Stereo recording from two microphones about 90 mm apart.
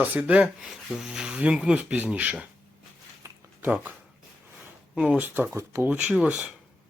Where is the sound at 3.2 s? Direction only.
35° right (ahead or behind).